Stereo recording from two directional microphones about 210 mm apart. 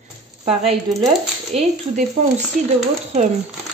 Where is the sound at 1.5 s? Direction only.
30° right (ahead or behind).